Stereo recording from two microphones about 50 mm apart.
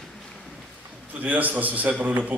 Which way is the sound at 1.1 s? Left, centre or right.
Right.